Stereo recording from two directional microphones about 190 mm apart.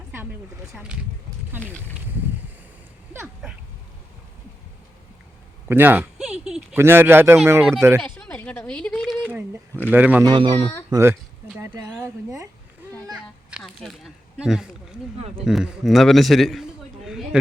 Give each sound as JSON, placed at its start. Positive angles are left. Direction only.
{"t": 0.7, "sound": "a man's voice", "side_deg": -5}
{"t": 3.1, "sound": "dog", "side_deg": -10}
{"t": 5.6, "sound": "speech", "side_deg": -10}
{"t": 7.9, "sound": "a sound", "side_deg": 5}
{"t": 10.2, "sound": "speech", "side_deg": -25}
{"t": 10.9, "sound": "speech", "side_deg": -15}
{"t": 11.5, "sound": "a sound", "side_deg": -10}
{"t": 13.7, "sound": "a sound", "side_deg": 0}
{"t": 15.4, "sound": "a man's voice", "side_deg": 0}